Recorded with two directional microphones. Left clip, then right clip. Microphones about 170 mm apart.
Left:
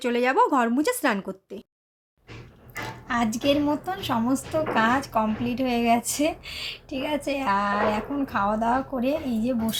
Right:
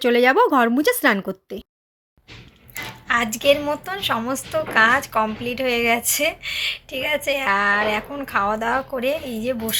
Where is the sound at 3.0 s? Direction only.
Centre (ahead or behind).